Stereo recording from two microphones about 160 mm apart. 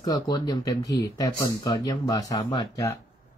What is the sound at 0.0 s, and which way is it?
Speech, 25° left (ahead or behind).